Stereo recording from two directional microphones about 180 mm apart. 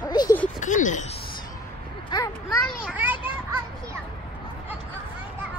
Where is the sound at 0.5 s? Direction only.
45° left (ahead or behind).